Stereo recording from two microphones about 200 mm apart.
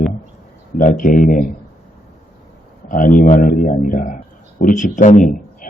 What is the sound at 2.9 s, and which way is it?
Speech, 40° left (ahead or behind).